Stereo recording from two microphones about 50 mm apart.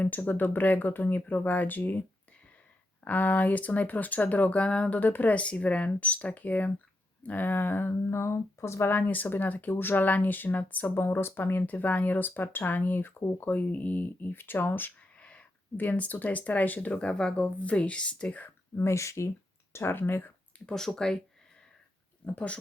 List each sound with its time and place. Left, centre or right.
0.0 s speech: left
4.9 s speech: left
8.1 s speech: left
8.9 s speech: left
10.9 s speech: left
11.6 s speech: left
13.5 s speech: left
15.2 s a sound: left
15.8 s speech: left
18.8 s speech: left
19.7 s speech: left
20.7 s speech: centre
22.2 s speech: left